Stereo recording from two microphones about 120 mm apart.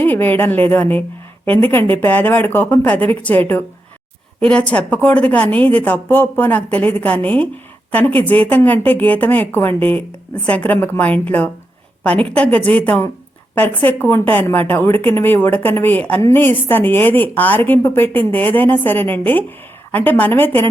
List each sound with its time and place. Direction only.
0.0 s a woman's voice: 15° left (ahead or behind)